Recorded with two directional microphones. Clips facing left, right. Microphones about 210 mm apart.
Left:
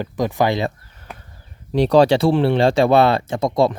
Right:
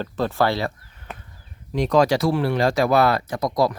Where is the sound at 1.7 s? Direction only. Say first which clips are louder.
Left 5 dB; 30° left (ahead or behind).